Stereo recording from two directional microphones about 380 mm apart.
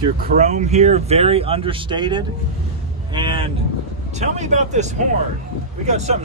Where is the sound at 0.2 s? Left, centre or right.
Right.